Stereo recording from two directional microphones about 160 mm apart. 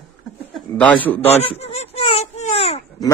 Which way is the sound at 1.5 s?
40° left (ahead or behind).